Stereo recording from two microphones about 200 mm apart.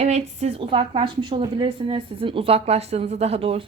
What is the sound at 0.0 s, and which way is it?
A woman's voice, 35° right (ahead or behind).